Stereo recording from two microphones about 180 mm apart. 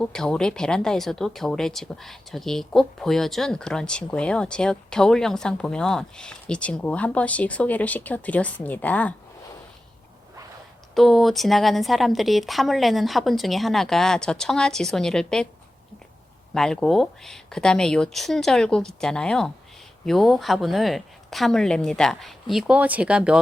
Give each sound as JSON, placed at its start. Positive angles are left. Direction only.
{"t": 0.0, "sound": "speech", "side_deg": 5}
{"t": 10.9, "sound": "speech", "side_deg": 0}
{"t": 16.6, "sound": "speech", "side_deg": 0}